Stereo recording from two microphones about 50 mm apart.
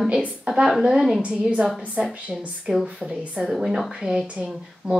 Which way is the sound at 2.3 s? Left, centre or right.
Centre.